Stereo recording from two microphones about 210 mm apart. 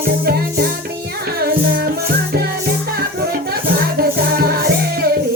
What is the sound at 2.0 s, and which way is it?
Music, 50° right (ahead or behind).